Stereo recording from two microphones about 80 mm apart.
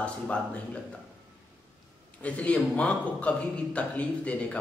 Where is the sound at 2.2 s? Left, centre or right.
Centre.